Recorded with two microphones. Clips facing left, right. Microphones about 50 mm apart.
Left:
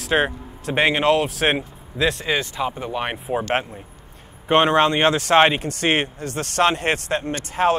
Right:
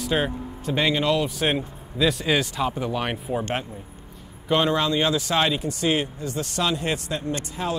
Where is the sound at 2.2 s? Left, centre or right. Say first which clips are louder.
Even; centre.